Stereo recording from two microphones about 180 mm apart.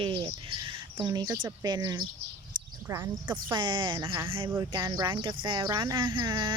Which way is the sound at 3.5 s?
25° right (ahead or behind).